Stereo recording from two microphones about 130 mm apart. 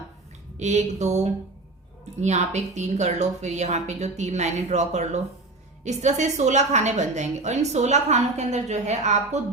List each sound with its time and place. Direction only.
0.5 s a woman's voice: 60° right (ahead or behind)